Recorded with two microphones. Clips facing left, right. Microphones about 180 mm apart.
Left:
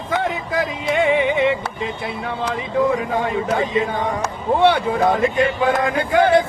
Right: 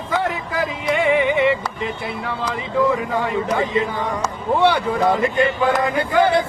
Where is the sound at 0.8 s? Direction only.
20° left (ahead or behind).